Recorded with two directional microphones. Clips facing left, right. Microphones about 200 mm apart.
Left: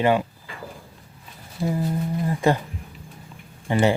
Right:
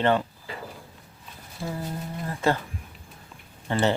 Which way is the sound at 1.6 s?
20° left (ahead or behind).